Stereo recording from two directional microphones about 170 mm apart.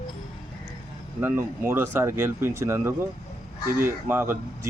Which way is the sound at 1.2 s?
10° right (ahead or behind).